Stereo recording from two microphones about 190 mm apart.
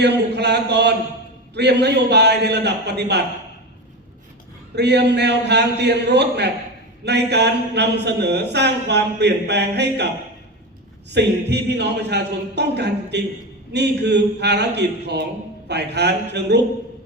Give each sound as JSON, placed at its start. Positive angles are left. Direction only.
{"t": 0.0, "sound": "a man's voice", "side_deg": -60}
{"t": 4.7, "sound": "a man's voice", "side_deg": -60}
{"t": 11.1, "sound": "a man's voice", "side_deg": -60}